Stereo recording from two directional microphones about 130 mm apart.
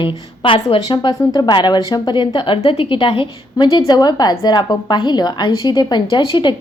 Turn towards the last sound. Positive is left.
turn(degrees=35)  # may be behind; listen again after turning